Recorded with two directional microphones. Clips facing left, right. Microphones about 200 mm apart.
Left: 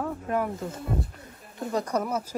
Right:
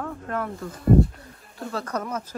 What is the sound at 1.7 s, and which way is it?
Speech, 10° left (ahead or behind).